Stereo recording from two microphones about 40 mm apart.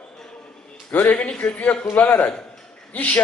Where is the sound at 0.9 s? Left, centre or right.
Left.